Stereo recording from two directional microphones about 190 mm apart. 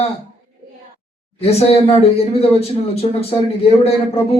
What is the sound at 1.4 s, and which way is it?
Speech, 35° left (ahead or behind).